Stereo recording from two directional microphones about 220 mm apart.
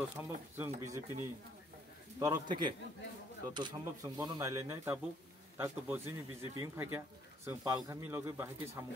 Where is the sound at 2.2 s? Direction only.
20° right (ahead or behind).